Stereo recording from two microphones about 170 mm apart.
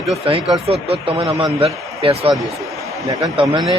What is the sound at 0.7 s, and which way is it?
A man's voice, 35° right (ahead or behind).